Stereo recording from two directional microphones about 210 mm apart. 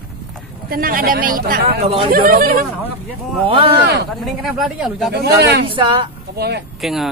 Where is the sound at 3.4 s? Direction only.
25° right (ahead or behind).